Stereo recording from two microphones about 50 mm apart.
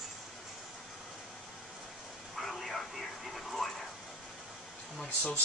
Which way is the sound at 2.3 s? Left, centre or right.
Centre.